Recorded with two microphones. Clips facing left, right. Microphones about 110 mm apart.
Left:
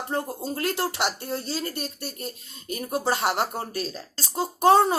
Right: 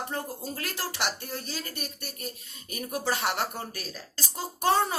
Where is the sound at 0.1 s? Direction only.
30° left (ahead or behind).